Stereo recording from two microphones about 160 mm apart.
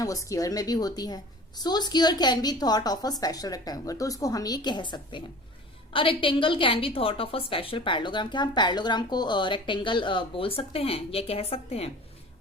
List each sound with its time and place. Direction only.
0.0 s a woman's voice: 20° left (ahead or behind); by 11.9 s 40° left (ahead or behind)